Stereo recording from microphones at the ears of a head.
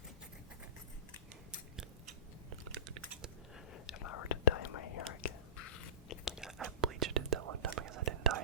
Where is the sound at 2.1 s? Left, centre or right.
Right.